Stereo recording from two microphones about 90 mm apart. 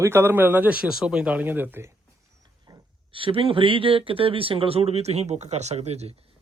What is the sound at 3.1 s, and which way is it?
Speech, 80° right.